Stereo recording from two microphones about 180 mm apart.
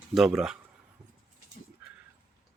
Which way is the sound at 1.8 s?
5° right (ahead or behind).